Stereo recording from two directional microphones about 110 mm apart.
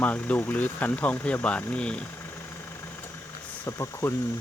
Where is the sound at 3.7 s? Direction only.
25° left (ahead or behind).